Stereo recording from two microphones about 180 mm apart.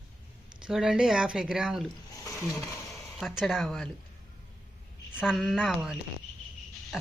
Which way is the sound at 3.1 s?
Centre (ahead or behind).